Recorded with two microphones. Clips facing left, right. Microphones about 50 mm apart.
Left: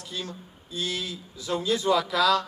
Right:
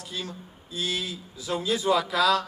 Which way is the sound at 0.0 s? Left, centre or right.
Centre.